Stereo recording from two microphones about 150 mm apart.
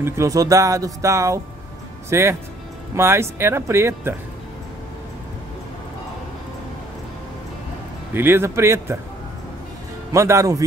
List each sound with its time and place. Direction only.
0.0 s speech: 20° right (ahead or behind)
8.1 s speech: 15° right (ahead or behind)
10.1 s speech: 20° right (ahead or behind)